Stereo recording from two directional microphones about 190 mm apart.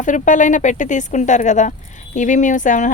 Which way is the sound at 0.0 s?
40° left (ahead or behind).